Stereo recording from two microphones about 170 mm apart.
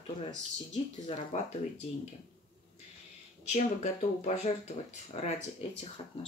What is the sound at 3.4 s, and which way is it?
Speech, 45° left (ahead or behind).